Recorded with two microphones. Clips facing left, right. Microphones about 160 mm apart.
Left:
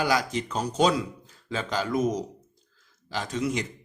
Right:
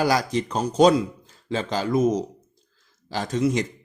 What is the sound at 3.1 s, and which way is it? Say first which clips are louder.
Speech: right 5 dB; 40° right (ahead or behind).